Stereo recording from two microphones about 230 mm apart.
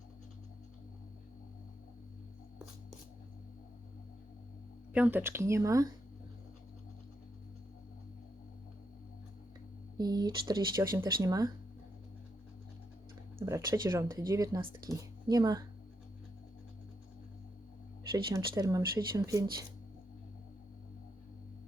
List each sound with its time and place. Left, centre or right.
4.9 s speech: centre
10.0 s speech: centre
13.4 s speech: centre
18.3 s speech: centre